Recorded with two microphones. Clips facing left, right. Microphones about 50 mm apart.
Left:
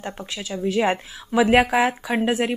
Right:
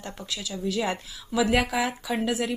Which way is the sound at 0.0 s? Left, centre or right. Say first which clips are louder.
Left 4 dB; left.